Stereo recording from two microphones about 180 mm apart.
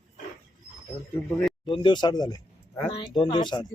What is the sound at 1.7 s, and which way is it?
Speech, 25° left (ahead or behind).